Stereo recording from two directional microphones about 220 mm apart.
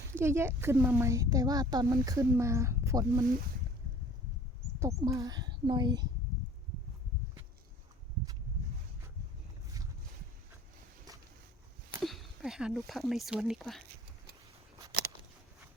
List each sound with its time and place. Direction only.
0.1 s a child's voice: 10° right (ahead or behind)
4.8 s speech: 15° right (ahead or behind)
12.0 s speech: centre (ahead or behind)